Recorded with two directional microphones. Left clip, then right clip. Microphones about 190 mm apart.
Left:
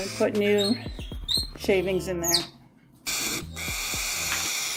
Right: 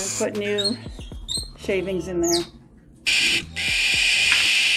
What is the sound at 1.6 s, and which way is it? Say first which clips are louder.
Speech: even; 25° left (ahead or behind).